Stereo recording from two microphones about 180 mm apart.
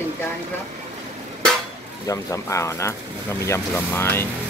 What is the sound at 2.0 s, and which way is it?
Speech, 15° left (ahead or behind).